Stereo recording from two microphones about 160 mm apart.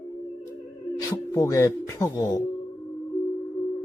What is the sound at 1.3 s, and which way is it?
Speech, 20° left (ahead or behind).